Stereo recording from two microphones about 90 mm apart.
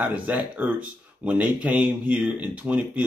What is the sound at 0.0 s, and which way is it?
Speech, 15° right (ahead or behind).